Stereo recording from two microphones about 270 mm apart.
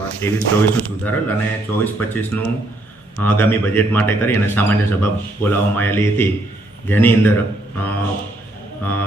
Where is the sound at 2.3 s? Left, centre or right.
Left.